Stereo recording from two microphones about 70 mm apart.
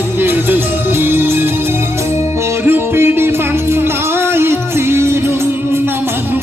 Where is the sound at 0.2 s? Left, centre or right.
Right.